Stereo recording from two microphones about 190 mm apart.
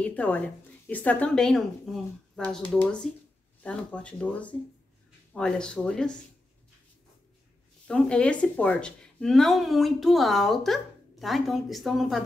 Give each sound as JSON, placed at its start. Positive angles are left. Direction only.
{"t": 0.0, "sound": "speech", "side_deg": 10}
{"t": 7.8, "sound": "speech", "side_deg": 5}